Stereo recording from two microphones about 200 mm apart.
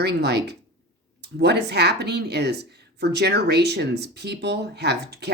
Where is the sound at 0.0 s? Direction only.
55° right (ahead or behind).